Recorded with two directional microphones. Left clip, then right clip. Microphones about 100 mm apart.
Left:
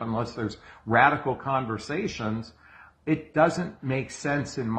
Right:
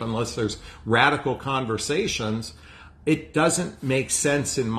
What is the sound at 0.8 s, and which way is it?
Speech, 20° right (ahead or behind).